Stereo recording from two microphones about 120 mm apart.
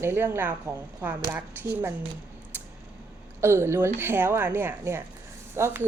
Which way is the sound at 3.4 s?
20° right (ahead or behind).